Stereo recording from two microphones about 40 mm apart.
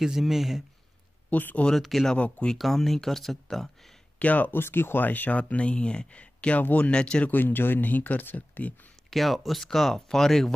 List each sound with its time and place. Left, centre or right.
0.0 s speech: centre
1.3 s speech: left
1.8 s speech: centre
2.1 s speech: left
2.5 s speech: centre
4.2 s speech: left
4.5 s speech: left
5.0 s speech: left
5.4 s speech: left
7.2 s speech: left
9.1 s speech: centre